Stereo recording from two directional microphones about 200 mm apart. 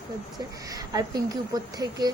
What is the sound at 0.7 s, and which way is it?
Speech, 20° right (ahead or behind).